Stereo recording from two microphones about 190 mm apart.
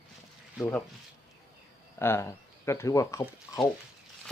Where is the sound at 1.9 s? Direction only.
15° left (ahead or behind).